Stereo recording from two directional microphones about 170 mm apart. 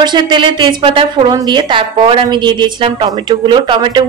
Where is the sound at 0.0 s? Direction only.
25° right (ahead or behind).